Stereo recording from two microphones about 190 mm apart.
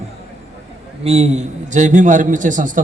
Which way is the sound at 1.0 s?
35° right (ahead or behind).